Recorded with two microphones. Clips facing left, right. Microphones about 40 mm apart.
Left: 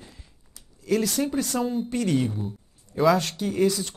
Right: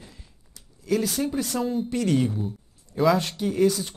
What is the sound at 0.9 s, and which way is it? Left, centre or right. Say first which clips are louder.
Speech: left 1 dB; left.